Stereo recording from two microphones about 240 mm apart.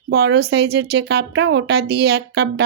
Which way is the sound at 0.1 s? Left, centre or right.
Right.